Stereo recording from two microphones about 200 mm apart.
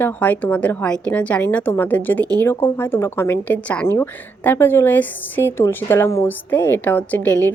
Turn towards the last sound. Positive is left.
turn(degrees=5)  # may be behind; listen again after turning